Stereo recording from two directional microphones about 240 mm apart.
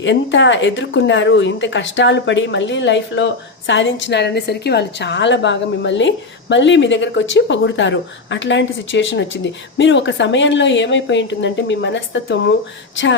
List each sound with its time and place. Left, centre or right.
0.0 s a woman's voice: left